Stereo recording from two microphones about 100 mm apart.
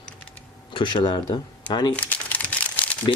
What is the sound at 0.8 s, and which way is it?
Speech, 55° left (ahead or behind).